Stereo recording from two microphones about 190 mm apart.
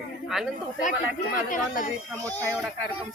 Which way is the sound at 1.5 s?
45° left (ahead or behind).